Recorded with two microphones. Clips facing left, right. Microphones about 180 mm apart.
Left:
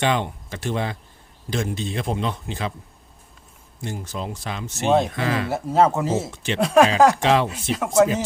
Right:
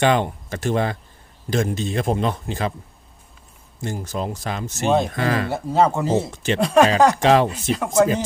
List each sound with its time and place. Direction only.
0.0 s speech: 45° right (ahead or behind)
3.8 s speech: 45° right (ahead or behind)
5.5 s speech: centre (ahead or behind)
6.3 s speech: 45° right (ahead or behind)
6.6 s speech: centre (ahead or behind)
7.2 s speech: 45° right (ahead or behind)
7.4 s speech: centre (ahead or behind)